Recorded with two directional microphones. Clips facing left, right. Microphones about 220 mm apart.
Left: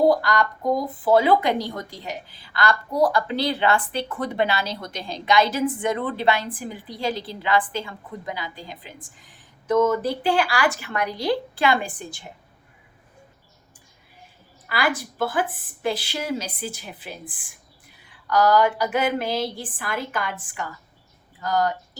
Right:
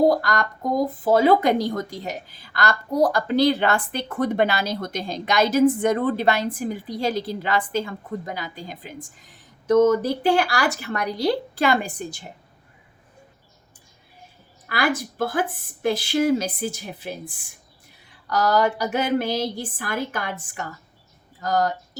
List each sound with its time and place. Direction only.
0.1 s a woman's voice: 45° right (ahead or behind)
14.7 s a woman's voice: 45° right (ahead or behind)